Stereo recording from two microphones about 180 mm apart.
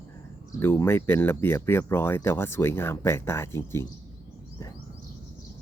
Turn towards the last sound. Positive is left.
turn(degrees=15)  # may be behind; listen again after turning